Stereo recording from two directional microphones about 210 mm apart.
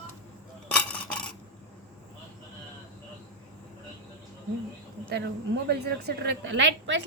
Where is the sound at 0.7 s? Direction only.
5° left (ahead or behind).